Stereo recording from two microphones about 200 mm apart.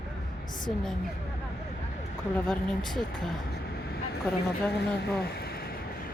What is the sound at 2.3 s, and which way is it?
A woman's voice, 5° left (ahead or behind).